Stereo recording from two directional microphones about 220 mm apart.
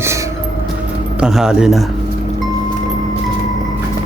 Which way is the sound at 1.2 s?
5° right (ahead or behind).